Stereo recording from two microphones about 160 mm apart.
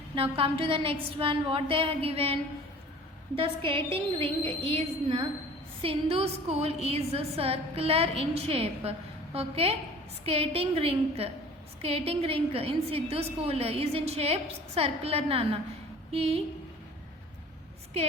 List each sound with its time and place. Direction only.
0.2 s a woman's voice: 35° right (ahead or behind)
18.0 s a woman's voice: 40° right (ahead or behind)